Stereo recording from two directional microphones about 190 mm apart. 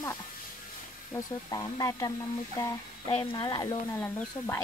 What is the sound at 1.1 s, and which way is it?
Speech, 20° left (ahead or behind).